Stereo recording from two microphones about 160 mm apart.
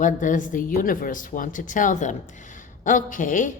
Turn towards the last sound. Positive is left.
turn(degrees=55)  # may be behind; listen again after turning